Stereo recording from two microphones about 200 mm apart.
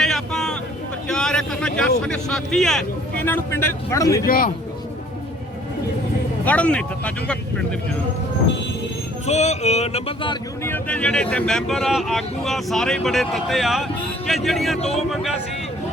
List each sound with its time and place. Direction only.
0.0 s a sound: centre (ahead or behind)
1.0 s vehicle: 5° left (ahead or behind)
2.0 s speech: 5° left (ahead or behind)
4.3 s a man's voice: 45° left (ahead or behind)
6.4 s speech: 5° left (ahead or behind)
9.2 s a sound: 35° left (ahead or behind)
10.6 s speech: 10° left (ahead or behind)